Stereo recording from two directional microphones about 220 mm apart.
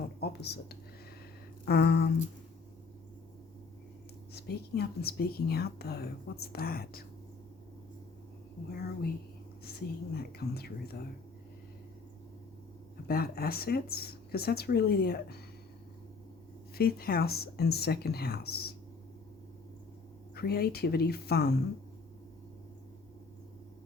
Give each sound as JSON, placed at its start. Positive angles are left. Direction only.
{"t": 0.2, "sound": "speech", "side_deg": 45}
{"t": 4.4, "sound": "speech", "side_deg": 45}
{"t": 8.7, "sound": "speech", "side_deg": 45}
{"t": 13.1, "sound": "speech", "side_deg": 45}
{"t": 16.7, "sound": "speech", "side_deg": 45}
{"t": 20.3, "sound": "speech", "side_deg": 45}